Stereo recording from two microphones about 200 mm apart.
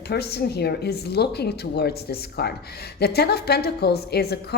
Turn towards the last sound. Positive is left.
turn(degrees=50)  # may be behind; listen again after turning